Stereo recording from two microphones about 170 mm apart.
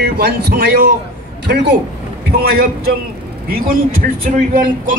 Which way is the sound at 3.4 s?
55° right (ahead or behind).